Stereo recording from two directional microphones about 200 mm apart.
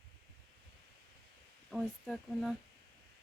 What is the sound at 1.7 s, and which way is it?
Speech, centre (ahead or behind).